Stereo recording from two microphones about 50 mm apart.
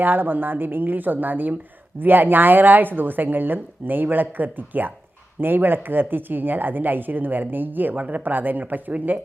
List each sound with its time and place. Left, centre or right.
0.0 s speech: right